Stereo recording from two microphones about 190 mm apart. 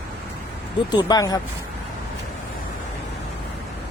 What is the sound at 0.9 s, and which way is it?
Speech, 20° left (ahead or behind).